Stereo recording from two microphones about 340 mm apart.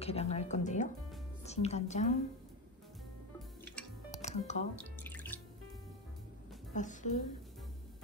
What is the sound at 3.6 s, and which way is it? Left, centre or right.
Music, centre.